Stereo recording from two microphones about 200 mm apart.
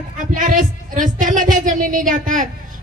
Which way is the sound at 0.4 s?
40° right (ahead or behind).